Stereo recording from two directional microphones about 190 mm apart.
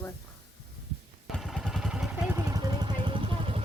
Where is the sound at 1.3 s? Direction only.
Centre (ahead or behind).